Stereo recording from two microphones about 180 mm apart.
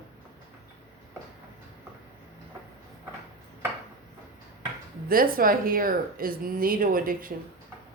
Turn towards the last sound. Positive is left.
turn(degrees=-50)  # may be behind; listen again after turning